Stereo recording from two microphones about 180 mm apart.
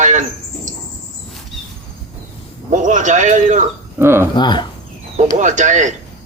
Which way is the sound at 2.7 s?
45° right (ahead or behind).